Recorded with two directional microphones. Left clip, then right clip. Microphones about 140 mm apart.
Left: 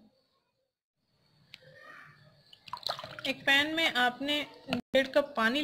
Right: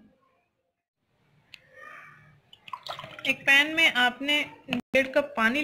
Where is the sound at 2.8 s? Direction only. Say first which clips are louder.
Even; 85° left.